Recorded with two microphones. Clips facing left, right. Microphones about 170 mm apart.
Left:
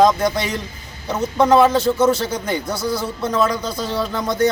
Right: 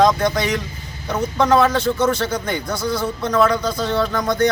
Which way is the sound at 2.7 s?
10° left (ahead or behind).